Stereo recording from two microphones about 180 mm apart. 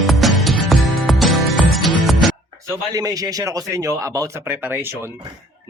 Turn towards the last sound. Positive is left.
turn(degrees=-15)  # may be behind; listen again after turning